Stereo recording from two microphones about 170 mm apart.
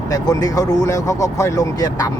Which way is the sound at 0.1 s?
20° left (ahead or behind).